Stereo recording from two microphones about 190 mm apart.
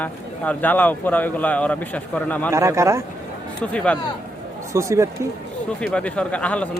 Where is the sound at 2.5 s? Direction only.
15° right (ahead or behind).